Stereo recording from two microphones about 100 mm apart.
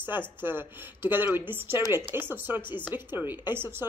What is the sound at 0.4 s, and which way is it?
A woman's voice, 20° right (ahead or behind).